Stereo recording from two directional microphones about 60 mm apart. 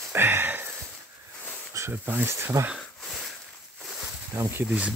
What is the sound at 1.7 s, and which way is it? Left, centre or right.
Insect, right.